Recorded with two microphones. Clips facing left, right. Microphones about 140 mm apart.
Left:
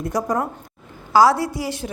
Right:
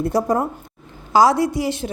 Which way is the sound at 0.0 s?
30° right (ahead or behind).